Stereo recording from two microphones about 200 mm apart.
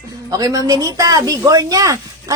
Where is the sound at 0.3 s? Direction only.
20° right (ahead or behind).